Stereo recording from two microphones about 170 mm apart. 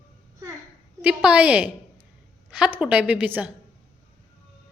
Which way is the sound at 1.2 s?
5° right (ahead or behind).